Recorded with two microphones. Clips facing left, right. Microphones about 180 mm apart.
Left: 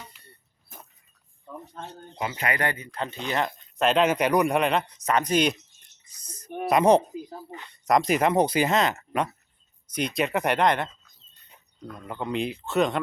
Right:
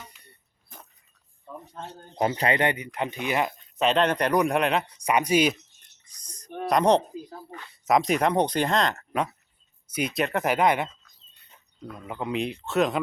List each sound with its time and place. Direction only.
2.1 s speech: 35° right (ahead or behind)
2.6 s speech: 20° right (ahead or behind)
3.8 s a man's voice: centre (ahead or behind)
6.1 s a sound: 5° left (ahead or behind)
6.7 s speech: 5° left (ahead or behind)
7.1 s speech: 20° left (ahead or behind)
7.7 s a man's voice: centre (ahead or behind)
9.8 s a man's voice: 5° right (ahead or behind)